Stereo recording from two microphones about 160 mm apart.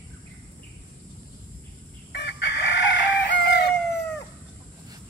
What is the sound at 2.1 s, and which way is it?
Chicken, 90° left.